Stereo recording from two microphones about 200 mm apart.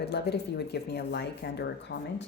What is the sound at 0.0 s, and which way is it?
Speech, 55° left (ahead or behind).